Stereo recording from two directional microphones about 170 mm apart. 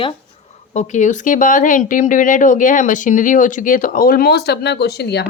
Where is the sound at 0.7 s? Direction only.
45° left (ahead or behind).